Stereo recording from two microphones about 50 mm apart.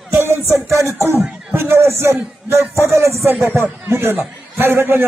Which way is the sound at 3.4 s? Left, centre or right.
Right.